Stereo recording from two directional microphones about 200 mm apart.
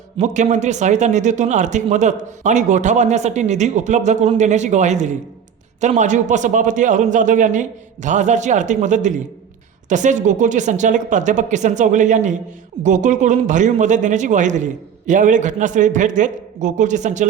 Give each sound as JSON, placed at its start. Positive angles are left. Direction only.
{"t": 0.2, "sound": "speech", "side_deg": -35}